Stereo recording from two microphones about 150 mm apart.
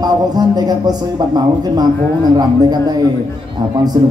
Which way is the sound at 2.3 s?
25° right (ahead or behind).